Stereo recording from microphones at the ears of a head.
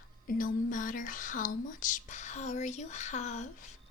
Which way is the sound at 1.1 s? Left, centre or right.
Left.